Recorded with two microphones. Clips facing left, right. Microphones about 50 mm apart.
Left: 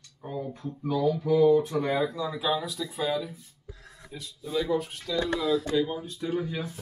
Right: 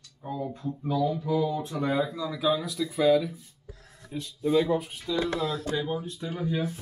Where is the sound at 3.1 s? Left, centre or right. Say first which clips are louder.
Right 10 dB; centre.